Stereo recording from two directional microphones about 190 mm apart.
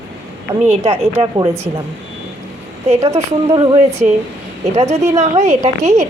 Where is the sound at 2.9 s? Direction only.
35° right (ahead or behind).